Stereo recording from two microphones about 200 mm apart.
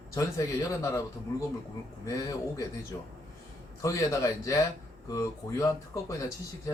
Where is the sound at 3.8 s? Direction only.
15° left (ahead or behind).